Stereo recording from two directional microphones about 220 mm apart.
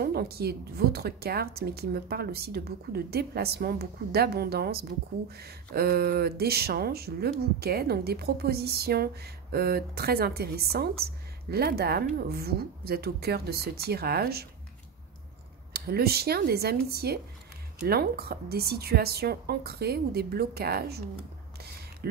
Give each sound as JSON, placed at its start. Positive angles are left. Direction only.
{"t": 0.0, "sound": "speech", "side_deg": -45}
{"t": 15.7, "sound": "speech", "side_deg": -45}